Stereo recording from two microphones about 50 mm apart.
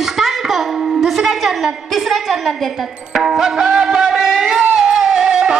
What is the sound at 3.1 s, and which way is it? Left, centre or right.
Music, centre.